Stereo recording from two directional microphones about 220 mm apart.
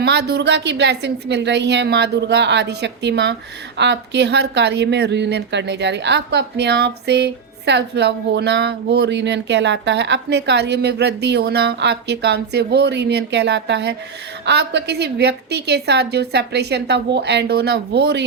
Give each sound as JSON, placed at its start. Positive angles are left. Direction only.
{"t": 0.0, "sound": "speech", "side_deg": -50}